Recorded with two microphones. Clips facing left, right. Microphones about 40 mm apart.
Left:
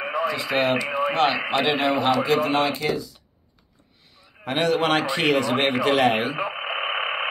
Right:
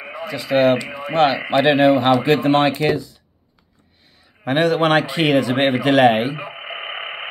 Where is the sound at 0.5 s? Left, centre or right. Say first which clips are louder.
Right 10 dB; centre.